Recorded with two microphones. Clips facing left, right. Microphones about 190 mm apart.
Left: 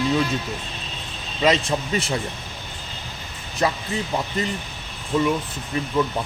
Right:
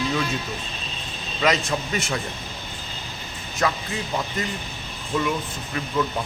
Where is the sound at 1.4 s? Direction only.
30° left (ahead or behind).